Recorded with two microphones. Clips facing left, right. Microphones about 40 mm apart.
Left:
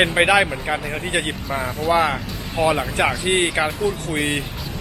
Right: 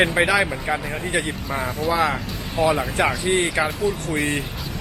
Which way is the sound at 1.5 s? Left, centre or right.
Centre.